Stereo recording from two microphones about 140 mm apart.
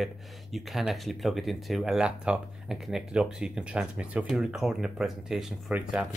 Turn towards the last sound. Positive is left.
turn(degrees=-10)  # may be behind; listen again after turning